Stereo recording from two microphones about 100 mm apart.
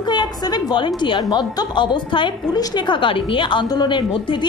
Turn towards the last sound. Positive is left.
turn(degrees=55)  # may be behind; listen again after turning